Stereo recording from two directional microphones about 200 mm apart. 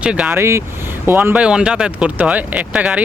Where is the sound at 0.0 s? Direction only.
5° right (ahead or behind).